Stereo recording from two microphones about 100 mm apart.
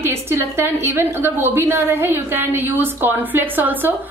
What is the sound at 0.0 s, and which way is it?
A woman's voice, 25° right (ahead or behind).